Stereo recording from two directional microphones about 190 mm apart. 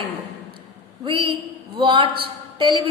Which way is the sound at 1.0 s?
25° right (ahead or behind).